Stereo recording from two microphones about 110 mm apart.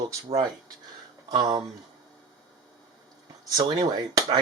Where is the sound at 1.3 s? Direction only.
40° right (ahead or behind).